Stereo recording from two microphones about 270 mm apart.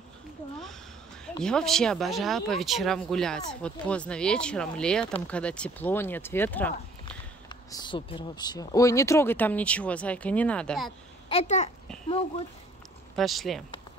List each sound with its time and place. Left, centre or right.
1.4 s speech: centre
11.2 s a child's voice: left
13.1 s speech: centre